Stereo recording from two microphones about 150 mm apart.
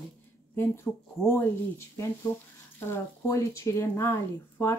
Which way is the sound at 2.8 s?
15° left (ahead or behind).